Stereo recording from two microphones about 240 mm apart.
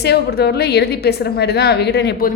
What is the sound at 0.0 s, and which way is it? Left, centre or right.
A woman's voice, left.